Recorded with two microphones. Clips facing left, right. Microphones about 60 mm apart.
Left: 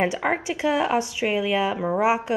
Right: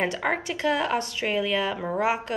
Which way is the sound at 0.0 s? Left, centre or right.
Centre.